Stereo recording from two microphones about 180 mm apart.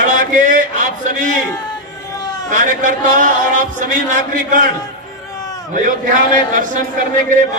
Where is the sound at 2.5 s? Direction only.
45° right (ahead or behind).